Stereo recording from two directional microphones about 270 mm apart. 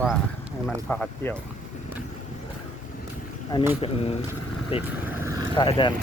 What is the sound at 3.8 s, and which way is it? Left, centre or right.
Speech, left.